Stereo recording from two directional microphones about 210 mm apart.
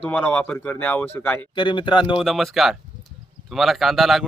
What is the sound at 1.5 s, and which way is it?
Speech, 20° left (ahead or behind).